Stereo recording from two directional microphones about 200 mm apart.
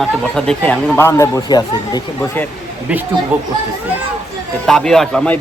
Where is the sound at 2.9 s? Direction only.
5° right (ahead or behind).